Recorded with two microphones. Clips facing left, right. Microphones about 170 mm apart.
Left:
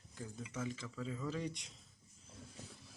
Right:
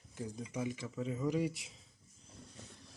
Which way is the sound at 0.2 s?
15° right (ahead or behind).